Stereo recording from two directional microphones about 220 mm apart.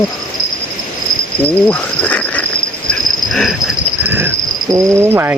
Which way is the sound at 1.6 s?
5° left (ahead or behind).